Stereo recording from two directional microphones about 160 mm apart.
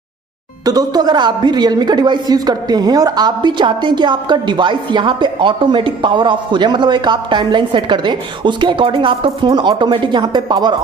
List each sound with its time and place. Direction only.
0.7 s a woman's voice: 25° right (ahead or behind)